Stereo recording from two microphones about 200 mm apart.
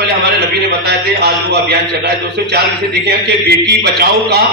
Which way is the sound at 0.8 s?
55° right (ahead or behind).